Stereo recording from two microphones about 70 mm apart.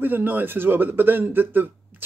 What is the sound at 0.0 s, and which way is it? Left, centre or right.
Speech, right.